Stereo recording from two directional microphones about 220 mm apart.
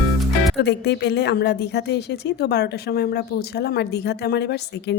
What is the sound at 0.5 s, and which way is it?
A woman's voice, 50° left (ahead or behind).